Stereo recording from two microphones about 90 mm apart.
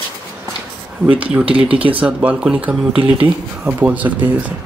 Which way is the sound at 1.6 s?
90° right.